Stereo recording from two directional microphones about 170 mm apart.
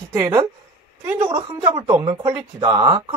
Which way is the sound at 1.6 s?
20° right (ahead or behind).